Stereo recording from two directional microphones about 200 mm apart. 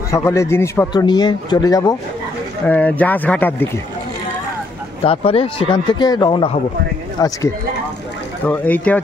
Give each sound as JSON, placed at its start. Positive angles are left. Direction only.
{"t": 0.1, "sound": "a man's voice", "side_deg": 15}
{"t": 2.6, "sound": "a man's voice", "side_deg": 5}
{"t": 5.0, "sound": "a man's voice", "side_deg": 30}
{"t": 8.5, "sound": "a man's voice", "side_deg": 5}